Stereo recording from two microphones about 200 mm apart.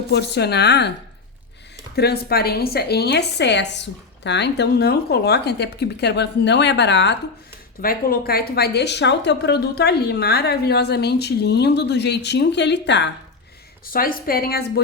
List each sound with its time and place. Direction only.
0.1 s a woman's voice: 55° left (ahead or behind)
7.8 s a woman's voice: 45° left (ahead or behind)
13.8 s a woman's voice: 45° left (ahead or behind)